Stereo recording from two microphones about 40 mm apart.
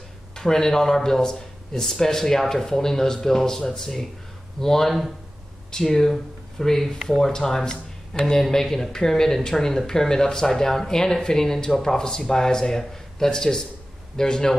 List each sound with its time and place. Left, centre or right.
0.4 s speech: centre